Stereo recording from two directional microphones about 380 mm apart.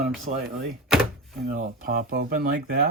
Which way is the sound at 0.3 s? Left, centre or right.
Right.